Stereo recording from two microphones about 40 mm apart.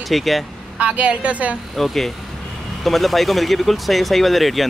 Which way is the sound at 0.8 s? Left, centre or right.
Right.